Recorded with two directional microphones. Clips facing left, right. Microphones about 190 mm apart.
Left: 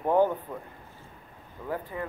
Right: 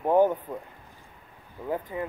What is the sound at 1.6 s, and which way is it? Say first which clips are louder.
Speech: right 3 dB; 20° right (ahead or behind).